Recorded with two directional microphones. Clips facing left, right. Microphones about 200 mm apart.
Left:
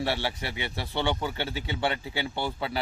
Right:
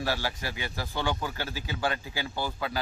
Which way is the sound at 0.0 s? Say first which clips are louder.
Left 2 dB; 25° left (ahead or behind).